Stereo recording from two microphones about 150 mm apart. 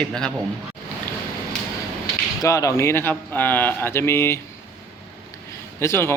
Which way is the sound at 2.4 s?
20° left (ahead or behind).